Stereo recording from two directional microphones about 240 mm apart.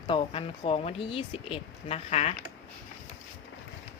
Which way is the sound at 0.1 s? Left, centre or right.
Left.